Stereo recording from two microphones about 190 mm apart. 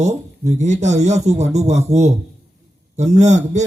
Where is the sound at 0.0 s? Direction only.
35° right (ahead or behind).